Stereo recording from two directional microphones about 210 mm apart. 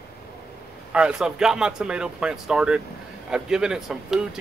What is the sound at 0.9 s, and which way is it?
Speech, 5° right (ahead or behind).